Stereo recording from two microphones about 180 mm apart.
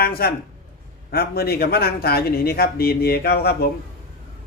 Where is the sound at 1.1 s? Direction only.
60° left (ahead or behind).